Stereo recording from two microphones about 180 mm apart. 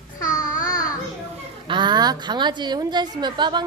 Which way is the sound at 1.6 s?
25° right (ahead or behind).